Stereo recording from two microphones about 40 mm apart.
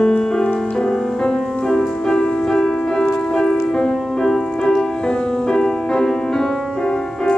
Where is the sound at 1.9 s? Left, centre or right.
Centre.